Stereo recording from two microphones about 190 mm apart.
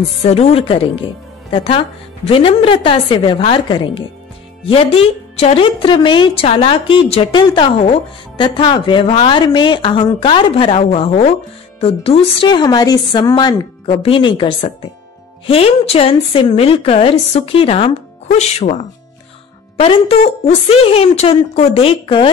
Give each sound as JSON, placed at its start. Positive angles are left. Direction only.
{"t": 0.2, "sound": "a woman's voice", "side_deg": 30}